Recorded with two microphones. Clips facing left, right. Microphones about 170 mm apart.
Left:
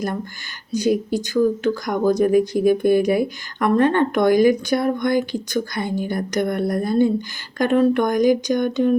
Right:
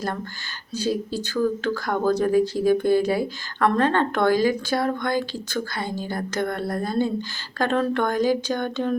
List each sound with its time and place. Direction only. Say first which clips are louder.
0.8 s speech: left 5 dB; 15° left (ahead or behind)